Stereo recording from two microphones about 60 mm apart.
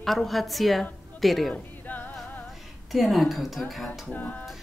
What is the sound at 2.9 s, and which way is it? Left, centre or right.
Speech, centre.